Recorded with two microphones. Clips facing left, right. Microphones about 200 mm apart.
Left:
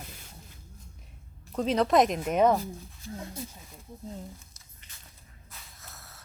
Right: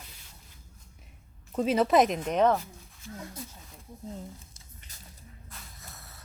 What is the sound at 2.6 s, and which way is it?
Speech, 35° left (ahead or behind).